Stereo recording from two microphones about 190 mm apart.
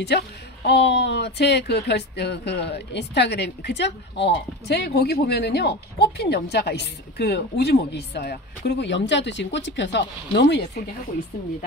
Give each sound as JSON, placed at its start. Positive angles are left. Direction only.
{"t": 0.7, "sound": "speech", "side_deg": 65}